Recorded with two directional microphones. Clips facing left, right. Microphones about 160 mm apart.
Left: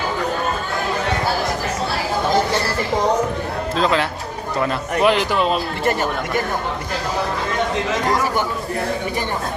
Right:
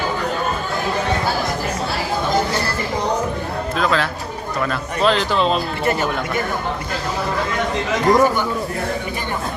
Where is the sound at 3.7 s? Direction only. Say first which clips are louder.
Left 1 dB; 25° left (ahead or behind).